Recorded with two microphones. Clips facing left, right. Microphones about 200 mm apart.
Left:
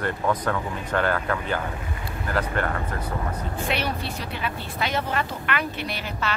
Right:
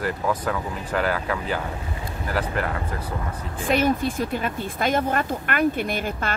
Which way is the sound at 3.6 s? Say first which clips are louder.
Right 8 dB; 45° right (ahead or behind).